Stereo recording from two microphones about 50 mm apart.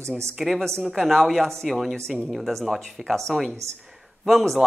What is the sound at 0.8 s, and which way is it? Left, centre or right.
A woman's voice, centre.